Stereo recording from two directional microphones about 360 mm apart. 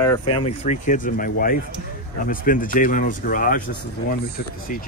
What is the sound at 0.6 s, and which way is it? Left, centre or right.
Speech, centre.